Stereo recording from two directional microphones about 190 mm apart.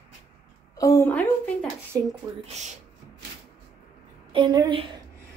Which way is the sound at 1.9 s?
15° right (ahead or behind).